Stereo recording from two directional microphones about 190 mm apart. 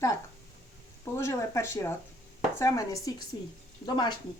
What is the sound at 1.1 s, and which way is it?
A woman's voice, 15° left (ahead or behind).